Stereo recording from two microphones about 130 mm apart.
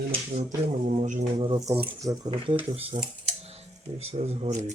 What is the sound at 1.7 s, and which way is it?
Speech, 45° right (ahead or behind).